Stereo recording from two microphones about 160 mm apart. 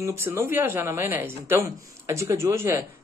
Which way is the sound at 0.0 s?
15° right (ahead or behind).